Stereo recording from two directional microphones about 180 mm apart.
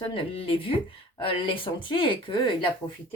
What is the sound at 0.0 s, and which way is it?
Speech, 30° left (ahead or behind).